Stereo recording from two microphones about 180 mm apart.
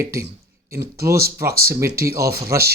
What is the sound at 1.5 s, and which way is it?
Speech, 60° right (ahead or behind).